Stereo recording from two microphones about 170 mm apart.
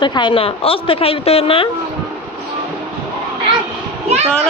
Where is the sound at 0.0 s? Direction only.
30° left (ahead or behind).